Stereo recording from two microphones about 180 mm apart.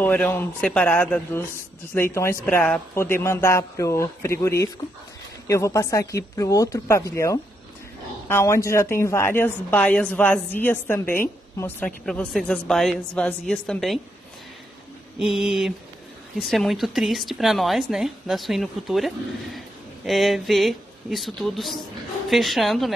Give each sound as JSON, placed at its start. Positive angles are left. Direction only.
{"t": 0.0, "sound": "a woman's voice", "side_deg": 10}
{"t": 15.1, "sound": "a woman's voice", "side_deg": 0}